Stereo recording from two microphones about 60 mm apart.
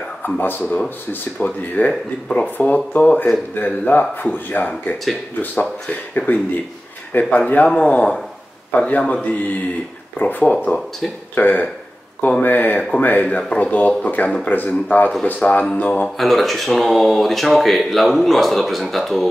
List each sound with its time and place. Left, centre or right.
0.2 s speech: left
15.6 s a sound: centre
16.2 s speech: centre